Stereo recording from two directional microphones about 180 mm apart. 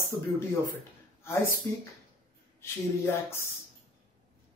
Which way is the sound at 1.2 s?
15° left (ahead or behind).